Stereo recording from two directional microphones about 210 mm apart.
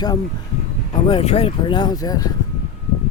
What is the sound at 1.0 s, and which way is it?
Speech, 25° left (ahead or behind).